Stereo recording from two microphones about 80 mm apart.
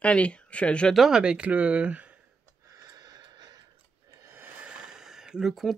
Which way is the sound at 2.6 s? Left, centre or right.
Right.